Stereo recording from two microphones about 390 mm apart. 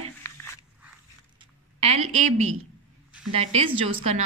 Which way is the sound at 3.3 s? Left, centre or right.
Centre.